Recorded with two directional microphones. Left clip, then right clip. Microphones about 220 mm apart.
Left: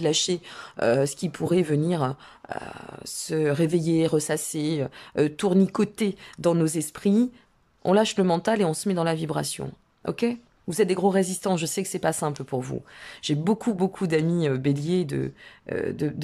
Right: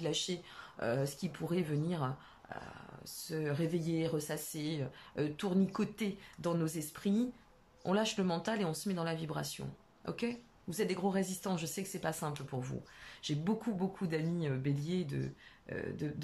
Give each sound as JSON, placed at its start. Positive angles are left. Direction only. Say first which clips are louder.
{"t": 0.0, "sound": "speech", "louder": "left 13 dB", "side_deg": 40}